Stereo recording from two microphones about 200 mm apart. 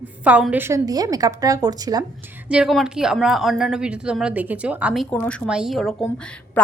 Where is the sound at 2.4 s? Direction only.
5° right (ahead or behind).